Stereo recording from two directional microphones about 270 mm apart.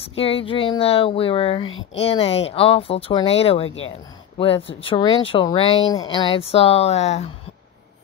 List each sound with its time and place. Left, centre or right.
0.0 s speech: left